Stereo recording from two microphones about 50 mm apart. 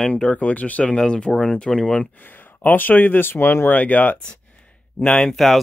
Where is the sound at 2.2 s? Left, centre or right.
Left.